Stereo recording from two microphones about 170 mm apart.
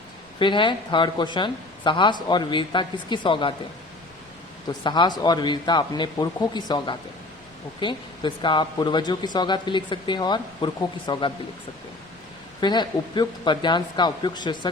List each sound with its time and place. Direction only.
0.3 s speech: 30° left (ahead or behind)
4.8 s speech: 25° left (ahead or behind)
12.5 s speech: 25° left (ahead or behind)